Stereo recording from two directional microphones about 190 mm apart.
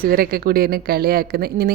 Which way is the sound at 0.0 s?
50° right (ahead or behind).